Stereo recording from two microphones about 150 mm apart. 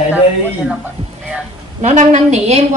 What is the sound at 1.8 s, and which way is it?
A woman's voice, 50° right (ahead or behind).